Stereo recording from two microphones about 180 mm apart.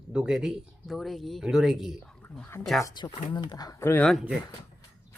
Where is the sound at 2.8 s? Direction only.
25° left (ahead or behind).